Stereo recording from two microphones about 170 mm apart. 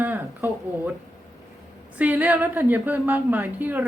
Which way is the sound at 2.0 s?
10° right (ahead or behind).